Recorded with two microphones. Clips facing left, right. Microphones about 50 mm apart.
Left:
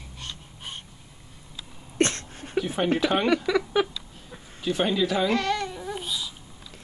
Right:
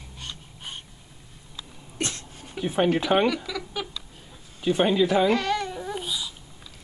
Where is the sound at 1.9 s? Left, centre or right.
Left.